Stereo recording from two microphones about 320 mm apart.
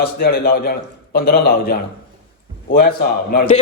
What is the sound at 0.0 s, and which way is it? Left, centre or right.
A man's voice, left.